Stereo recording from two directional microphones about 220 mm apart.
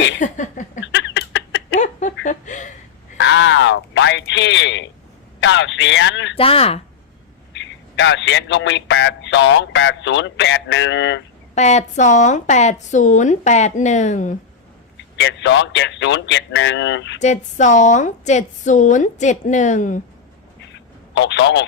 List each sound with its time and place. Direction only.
0.2 s a woman's voice: 35° left (ahead or behind)
0.9 s a sound: 55° left (ahead or behind)
1.8 s a sound: 35° left (ahead or behind)
3.2 s a sound: 55° left (ahead or behind)
5.4 s a man's voice: 55° left (ahead or behind)
6.3 s speech: 25° left (ahead or behind)
7.5 s a man's voice: 55° left (ahead or behind)
11.5 s a woman's voice: 30° left (ahead or behind)
15.1 s a man's voice: 55° left (ahead or behind)
17.2 s a woman's voice: 35° left (ahead or behind)
21.2 s a man's voice: 55° left (ahead or behind)